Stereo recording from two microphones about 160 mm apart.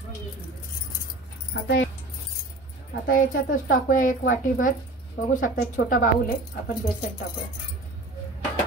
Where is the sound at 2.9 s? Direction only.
60° left (ahead or behind).